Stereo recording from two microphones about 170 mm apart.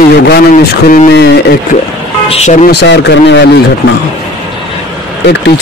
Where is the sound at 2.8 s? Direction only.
90° left.